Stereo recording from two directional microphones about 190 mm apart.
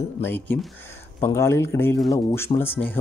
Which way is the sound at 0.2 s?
10° left (ahead or behind).